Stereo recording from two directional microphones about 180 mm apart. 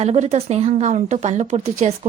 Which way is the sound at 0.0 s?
40° right (ahead or behind).